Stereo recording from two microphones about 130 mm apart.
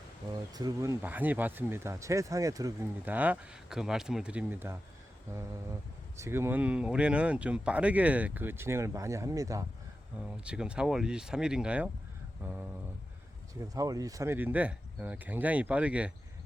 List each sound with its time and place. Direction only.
0.5 s speech: 25° right (ahead or behind)
1.0 s speech: 15° right (ahead or behind)
3.0 s speech: 10° right (ahead or behind)
6.1 s speech: 20° right (ahead or behind)
10.4 s speech: 10° right (ahead or behind)
12.4 s speech: 20° right (ahead or behind)